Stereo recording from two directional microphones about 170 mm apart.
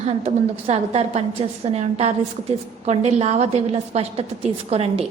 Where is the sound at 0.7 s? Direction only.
35° right (ahead or behind).